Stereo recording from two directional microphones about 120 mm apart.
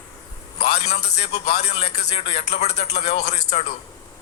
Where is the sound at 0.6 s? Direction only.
65° left (ahead or behind).